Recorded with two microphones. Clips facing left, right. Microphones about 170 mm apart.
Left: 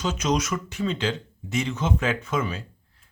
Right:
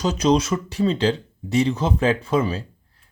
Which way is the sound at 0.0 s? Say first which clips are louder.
Right 6 dB; 35° right (ahead or behind).